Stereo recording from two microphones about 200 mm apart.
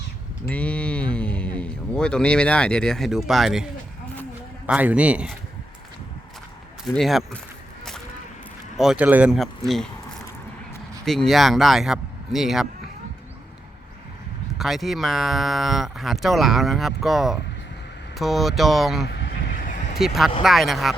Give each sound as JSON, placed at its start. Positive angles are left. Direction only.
{"t": 0.4, "sound": "a man's voice", "side_deg": 5}
{"t": 6.9, "sound": "speech", "side_deg": 0}
{"t": 8.7, "sound": "speech", "side_deg": 0}
{"t": 14.6, "sound": "speech", "side_deg": 0}
{"t": 19.0, "sound": "vehicle", "side_deg": 55}
{"t": 20.0, "sound": "speech", "side_deg": 0}